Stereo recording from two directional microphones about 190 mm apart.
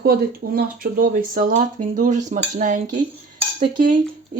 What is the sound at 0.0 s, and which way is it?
Speech, 55° right (ahead or behind).